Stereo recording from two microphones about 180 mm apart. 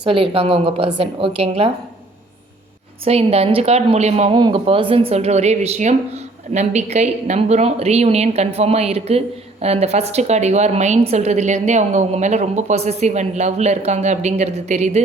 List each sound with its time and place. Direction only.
0.0 s a woman's voice: 30° right (ahead or behind)
3.0 s a woman's voice: 35° right (ahead or behind)
4.4 s a woman's voice: 25° right (ahead or behind)